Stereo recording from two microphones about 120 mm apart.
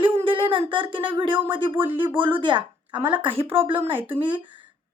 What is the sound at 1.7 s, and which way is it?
Speech, 15° right (ahead or behind).